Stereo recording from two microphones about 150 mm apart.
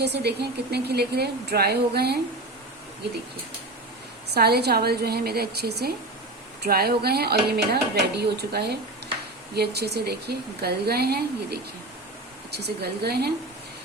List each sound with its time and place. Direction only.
0.0 s speech: 90° right
4.4 s speech: 90° right